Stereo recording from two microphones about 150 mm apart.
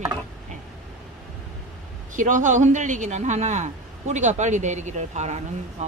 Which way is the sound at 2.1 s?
55° right (ahead or behind).